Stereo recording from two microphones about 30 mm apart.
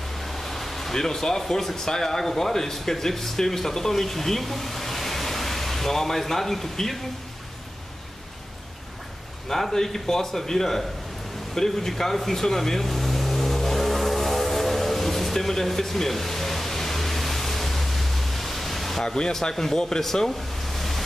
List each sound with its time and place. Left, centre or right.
0.2 s air conditioning: centre
1.4 s speech: centre
9.5 s speech: centre
11.5 s vehicle: centre
19.0 s speech: left
19.5 s speech: centre